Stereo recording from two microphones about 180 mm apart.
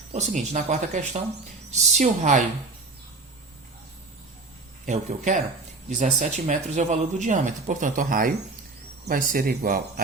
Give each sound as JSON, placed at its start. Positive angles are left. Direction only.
{"t": 0.1, "sound": "speech", "side_deg": -40}
{"t": 4.9, "sound": "speech", "side_deg": -45}